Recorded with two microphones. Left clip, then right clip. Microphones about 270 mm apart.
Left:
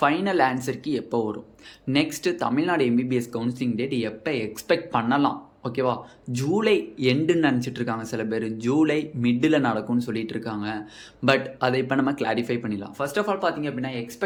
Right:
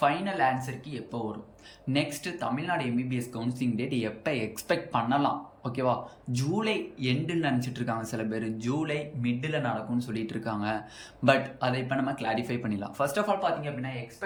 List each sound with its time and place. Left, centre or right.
0.0 s speech: centre
11.3 s speech: centre